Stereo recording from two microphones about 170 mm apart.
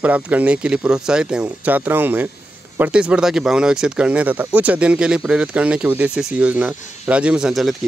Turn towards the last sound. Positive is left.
turn(degrees=0)  # may be behind; listen again after turning